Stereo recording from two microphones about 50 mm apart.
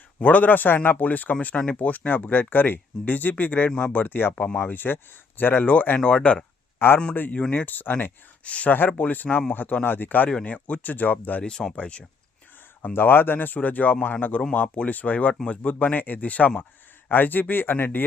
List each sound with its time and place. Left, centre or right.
0.2 s speech: left
4.4 s speech: left
4.6 s speech: left
6.0 s speech: centre
6.7 s speech: left
7.5 s speech: left
11.4 s speech: centre
12.9 s speech: left